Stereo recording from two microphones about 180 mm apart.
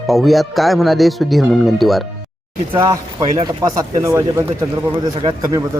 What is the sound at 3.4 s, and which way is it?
Speech, 20° right (ahead or behind).